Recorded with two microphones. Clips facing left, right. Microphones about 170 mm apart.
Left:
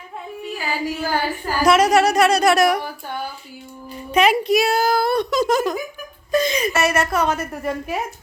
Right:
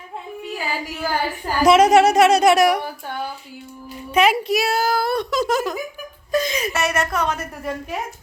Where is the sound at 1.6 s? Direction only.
20° right (ahead or behind).